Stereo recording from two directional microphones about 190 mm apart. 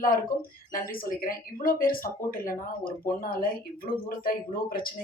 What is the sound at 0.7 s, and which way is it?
Speech, 50° left (ahead or behind).